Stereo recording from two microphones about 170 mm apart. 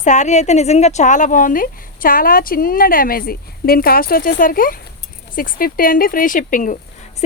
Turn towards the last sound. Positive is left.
turn(degrees=50)  # may be behind; listen again after turning